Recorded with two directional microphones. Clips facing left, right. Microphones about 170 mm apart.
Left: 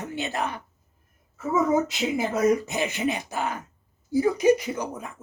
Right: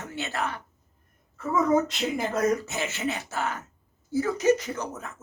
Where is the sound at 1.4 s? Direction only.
5° left (ahead or behind).